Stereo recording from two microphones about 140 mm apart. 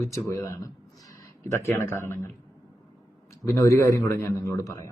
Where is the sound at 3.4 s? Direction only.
20° left (ahead or behind).